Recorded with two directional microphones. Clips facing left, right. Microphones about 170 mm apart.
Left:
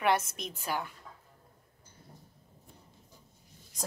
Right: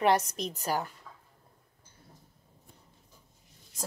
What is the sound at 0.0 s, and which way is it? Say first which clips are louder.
Speech: right 3 dB; 35° right (ahead or behind).